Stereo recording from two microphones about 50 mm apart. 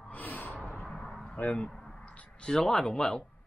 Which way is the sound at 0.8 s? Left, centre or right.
Centre.